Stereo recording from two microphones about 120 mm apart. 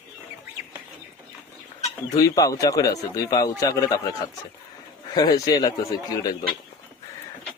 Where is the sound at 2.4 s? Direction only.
30° left (ahead or behind).